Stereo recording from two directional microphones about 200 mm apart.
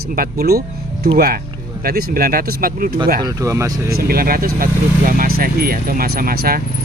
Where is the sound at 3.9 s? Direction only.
50° right (ahead or behind).